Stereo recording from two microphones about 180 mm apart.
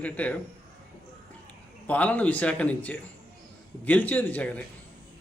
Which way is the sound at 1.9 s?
10° left (ahead or behind).